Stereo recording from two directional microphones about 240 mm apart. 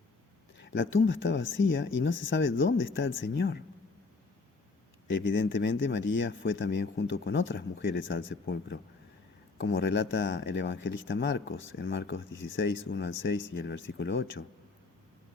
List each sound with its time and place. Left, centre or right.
0.6 s a sound: left
1.0 s speech: left
5.2 s speech: left